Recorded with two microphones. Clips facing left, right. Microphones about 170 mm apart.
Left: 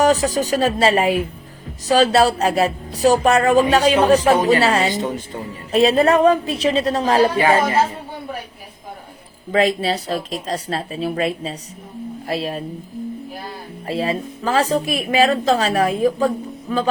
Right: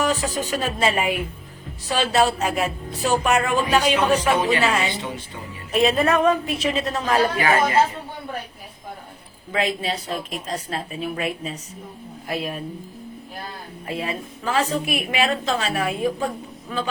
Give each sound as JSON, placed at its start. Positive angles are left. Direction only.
{"t": 0.0, "sound": "speech", "side_deg": 40}
{"t": 5.7, "sound": "speech", "side_deg": 35}
{"t": 9.5, "sound": "speech", "side_deg": 35}
{"t": 13.8, "sound": "speech", "side_deg": 35}